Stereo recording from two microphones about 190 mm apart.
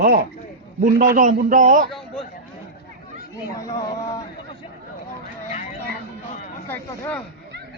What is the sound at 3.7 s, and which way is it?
Speech, 20° left (ahead or behind).